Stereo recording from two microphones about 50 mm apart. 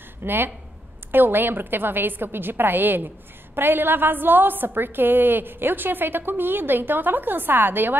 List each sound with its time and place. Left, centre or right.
0.2 s a woman's voice: right